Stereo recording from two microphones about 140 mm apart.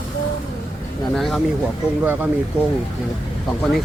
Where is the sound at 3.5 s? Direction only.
Centre (ahead or behind).